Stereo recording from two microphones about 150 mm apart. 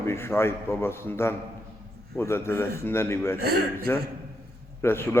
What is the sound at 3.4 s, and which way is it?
Speech, 90° right.